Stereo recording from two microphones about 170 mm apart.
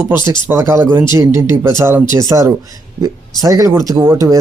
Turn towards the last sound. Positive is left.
turn(degrees=-15)  # may be behind; listen again after turning